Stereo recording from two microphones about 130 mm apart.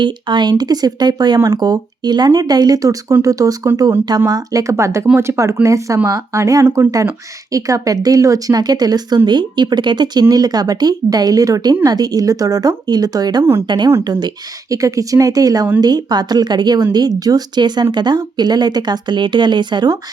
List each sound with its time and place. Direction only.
0.0 s a woman's voice: 35° right (ahead or behind)